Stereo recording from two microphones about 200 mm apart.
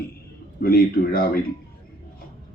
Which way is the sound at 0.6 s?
50° left (ahead or behind).